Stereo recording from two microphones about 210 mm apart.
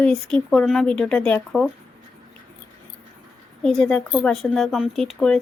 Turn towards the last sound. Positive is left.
turn(degrees=0)  # may be behind; listen again after turning